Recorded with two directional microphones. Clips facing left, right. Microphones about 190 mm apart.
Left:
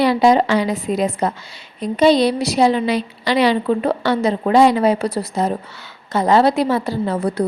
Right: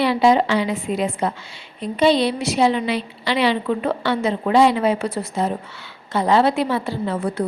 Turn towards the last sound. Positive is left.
turn(degrees=40)  # may be behind; listen again after turning